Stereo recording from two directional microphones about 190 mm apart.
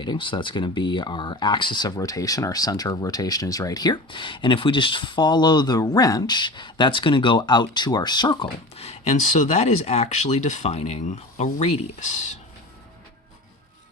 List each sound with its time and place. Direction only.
0.0 s speech: 25° left (ahead or behind)